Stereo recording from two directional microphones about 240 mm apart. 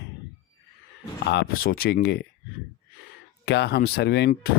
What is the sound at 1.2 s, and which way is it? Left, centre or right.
Speech, left.